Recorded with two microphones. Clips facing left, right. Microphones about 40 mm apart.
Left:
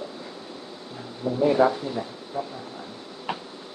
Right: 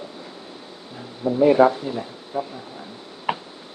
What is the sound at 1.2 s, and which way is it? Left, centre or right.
Speech, centre.